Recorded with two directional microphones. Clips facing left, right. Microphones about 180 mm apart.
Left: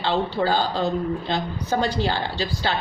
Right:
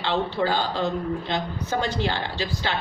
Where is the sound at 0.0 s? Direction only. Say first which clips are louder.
Left 2 dB; 35° left (ahead or behind).